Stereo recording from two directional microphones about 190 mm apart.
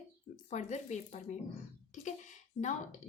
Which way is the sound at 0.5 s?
40° left (ahead or behind).